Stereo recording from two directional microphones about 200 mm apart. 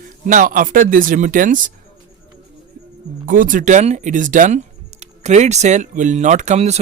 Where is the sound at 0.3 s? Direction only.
45° right (ahead or behind).